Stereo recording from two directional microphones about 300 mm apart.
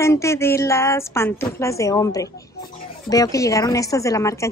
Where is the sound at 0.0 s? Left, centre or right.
Centre.